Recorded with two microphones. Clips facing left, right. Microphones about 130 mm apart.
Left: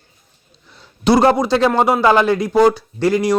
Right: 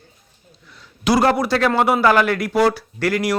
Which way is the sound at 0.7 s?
30° left (ahead or behind).